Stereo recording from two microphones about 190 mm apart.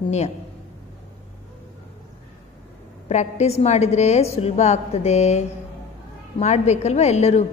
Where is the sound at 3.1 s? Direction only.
35° left (ahead or behind).